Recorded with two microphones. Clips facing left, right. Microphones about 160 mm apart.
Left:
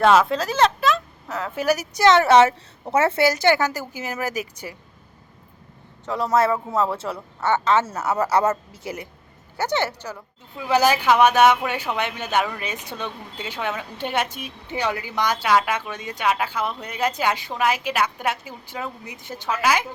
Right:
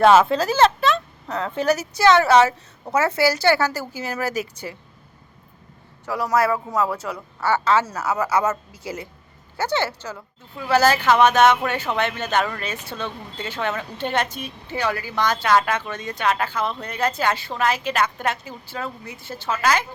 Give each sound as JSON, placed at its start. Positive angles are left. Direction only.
{"t": 0.0, "sound": "speech", "side_deg": -5}
{"t": 6.1, "sound": "a woman's voice", "side_deg": 25}